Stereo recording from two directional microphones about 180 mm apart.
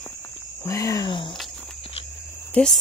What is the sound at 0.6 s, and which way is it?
Cricket, 15° left (ahead or behind).